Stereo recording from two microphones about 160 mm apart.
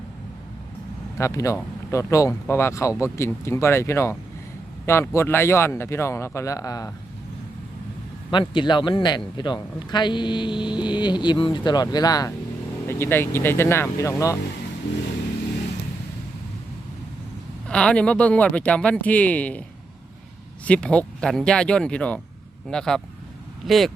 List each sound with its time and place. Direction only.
1.2 s speech: 20° left (ahead or behind)
8.3 s a man's voice: 30° left (ahead or behind)
17.7 s speech: 5° left (ahead or behind)
20.7 s speech: 5° left (ahead or behind)